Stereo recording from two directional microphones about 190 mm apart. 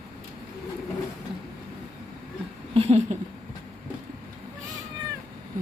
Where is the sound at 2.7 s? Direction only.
30° right (ahead or behind).